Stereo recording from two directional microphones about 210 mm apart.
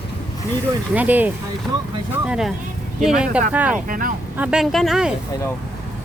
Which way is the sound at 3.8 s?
40° right (ahead or behind).